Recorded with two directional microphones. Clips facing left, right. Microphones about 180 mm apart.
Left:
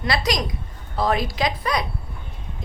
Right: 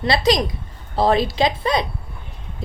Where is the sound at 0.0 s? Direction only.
25° right (ahead or behind).